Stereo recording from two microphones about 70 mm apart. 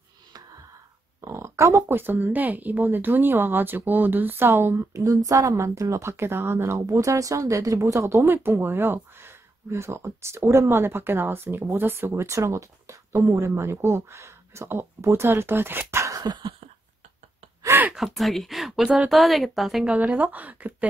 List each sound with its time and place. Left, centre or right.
1.2 s a sound: right
1.9 s speech: right
6.9 s speech: right
16.3 s a sound: right
17.9 s speech: centre
19.8 s a woman's voice: centre